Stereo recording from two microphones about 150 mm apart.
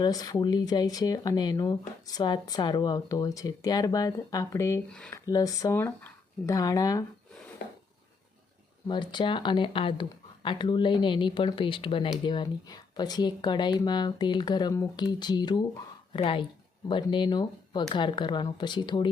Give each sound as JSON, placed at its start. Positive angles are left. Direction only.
{"t": 0.0, "sound": "speech", "side_deg": 25}
{"t": 4.9, "sound": "speech", "side_deg": 5}
{"t": 5.1, "sound": "speech", "side_deg": 25}
{"t": 8.9, "sound": "speech", "side_deg": 30}